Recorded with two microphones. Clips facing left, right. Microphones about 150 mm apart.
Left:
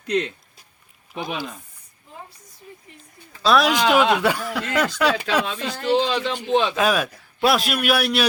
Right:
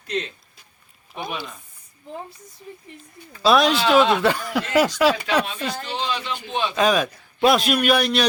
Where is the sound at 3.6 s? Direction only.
15° left (ahead or behind).